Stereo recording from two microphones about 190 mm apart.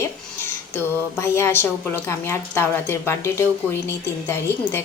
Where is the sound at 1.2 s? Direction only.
15° left (ahead or behind).